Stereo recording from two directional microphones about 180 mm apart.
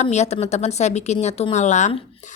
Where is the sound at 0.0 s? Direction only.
40° left (ahead or behind).